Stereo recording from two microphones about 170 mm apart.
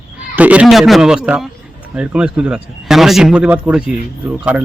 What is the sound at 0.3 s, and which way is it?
A man's voice, 10° right (ahead or behind).